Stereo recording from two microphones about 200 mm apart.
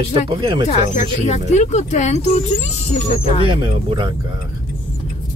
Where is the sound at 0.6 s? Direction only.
35° left (ahead or behind).